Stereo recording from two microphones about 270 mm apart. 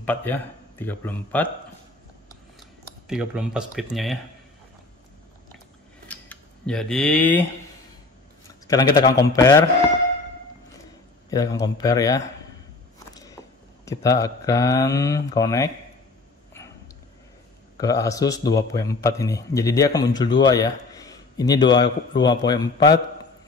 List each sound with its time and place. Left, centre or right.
0.0 s speech: centre
3.1 s speech: centre
6.0 s a sound: centre
8.6 s speech: centre
9.0 s a man's voice: left
9.3 s a man's voice: centre
11.2 s a man's voice: centre
13.1 s a sound: centre
13.8 s a man's voice: centre
17.7 s a man's voice: centre